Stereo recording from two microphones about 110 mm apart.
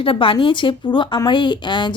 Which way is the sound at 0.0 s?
55° left (ahead or behind).